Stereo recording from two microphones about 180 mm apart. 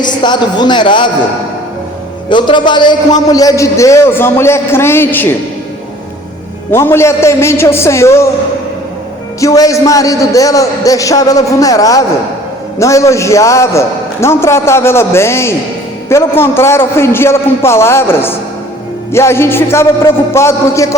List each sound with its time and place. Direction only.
0.0 s a man's voice: 25° left (ahead or behind)
2.3 s a man's voice: 25° left (ahead or behind)
6.7 s a man's voice: 15° left (ahead or behind)
9.4 s a man's voice: 20° left (ahead or behind)